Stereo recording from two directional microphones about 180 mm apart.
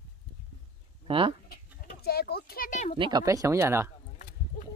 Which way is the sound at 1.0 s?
30° right (ahead or behind).